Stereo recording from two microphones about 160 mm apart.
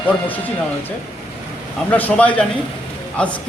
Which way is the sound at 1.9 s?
10° left (ahead or behind).